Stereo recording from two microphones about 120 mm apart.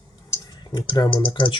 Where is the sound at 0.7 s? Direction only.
35° left (ahead or behind).